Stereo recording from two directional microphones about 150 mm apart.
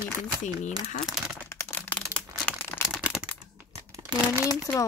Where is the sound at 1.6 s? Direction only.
10° left (ahead or behind).